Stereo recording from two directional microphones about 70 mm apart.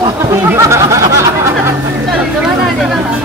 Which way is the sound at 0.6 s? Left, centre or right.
Right.